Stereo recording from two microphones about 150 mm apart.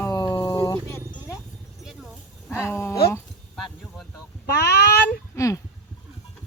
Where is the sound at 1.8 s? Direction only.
Centre (ahead or behind).